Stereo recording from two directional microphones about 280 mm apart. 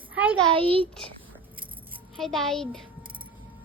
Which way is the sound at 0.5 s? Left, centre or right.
Centre.